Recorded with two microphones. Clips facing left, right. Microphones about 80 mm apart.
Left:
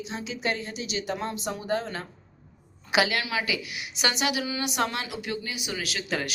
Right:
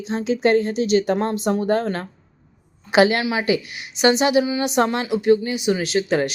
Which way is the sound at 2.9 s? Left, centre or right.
Right.